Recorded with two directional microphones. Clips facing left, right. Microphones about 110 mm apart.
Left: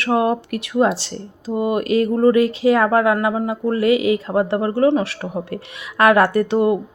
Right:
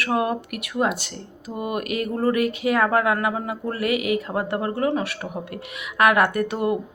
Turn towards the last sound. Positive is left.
turn(degrees=25)  # may be behind; listen again after turning